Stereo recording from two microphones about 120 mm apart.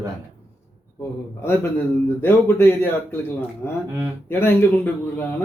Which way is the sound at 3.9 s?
20° left (ahead or behind).